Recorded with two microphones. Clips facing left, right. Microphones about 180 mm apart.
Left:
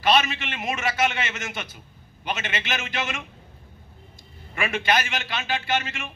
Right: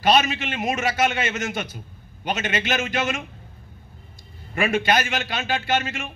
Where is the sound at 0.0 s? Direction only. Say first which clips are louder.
Right 2 dB; 45° right (ahead or behind).